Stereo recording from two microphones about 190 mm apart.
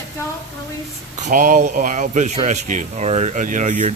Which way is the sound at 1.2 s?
45° right (ahead or behind).